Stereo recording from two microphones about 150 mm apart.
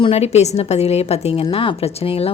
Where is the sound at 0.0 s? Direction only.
45° left (ahead or behind).